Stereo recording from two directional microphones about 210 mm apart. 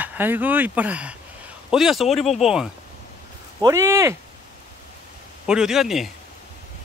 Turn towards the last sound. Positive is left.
turn(degrees=0)  # may be behind; listen again after turning